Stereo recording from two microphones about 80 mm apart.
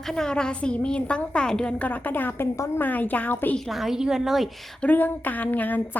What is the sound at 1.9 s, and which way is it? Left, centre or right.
Speech, left.